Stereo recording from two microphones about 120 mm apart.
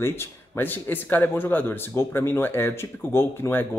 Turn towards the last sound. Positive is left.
turn(degrees=20)  # may be behind; listen again after turning